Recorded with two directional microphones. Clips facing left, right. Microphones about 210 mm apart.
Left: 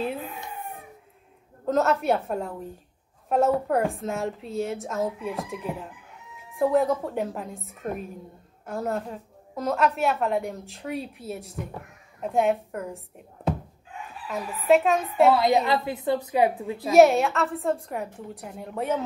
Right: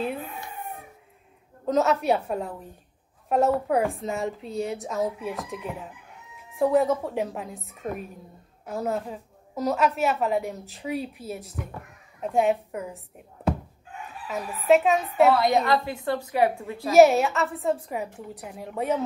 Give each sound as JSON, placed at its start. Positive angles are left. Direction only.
{"t": 1.7, "sound": "a woman's voice", "side_deg": 0}
{"t": 14.2, "sound": "a woman's voice", "side_deg": 0}
{"t": 15.3, "sound": "a woman's voice", "side_deg": 15}
{"t": 16.9, "sound": "a woman's voice", "side_deg": 0}